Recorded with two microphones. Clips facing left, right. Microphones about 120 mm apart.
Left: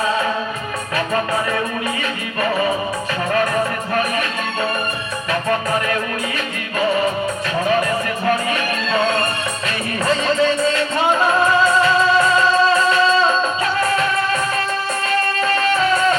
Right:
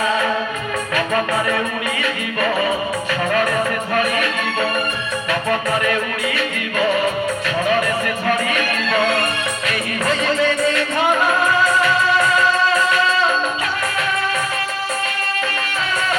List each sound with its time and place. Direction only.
0.9 s music: 30° left (ahead or behind)
15.4 s music: 35° left (ahead or behind)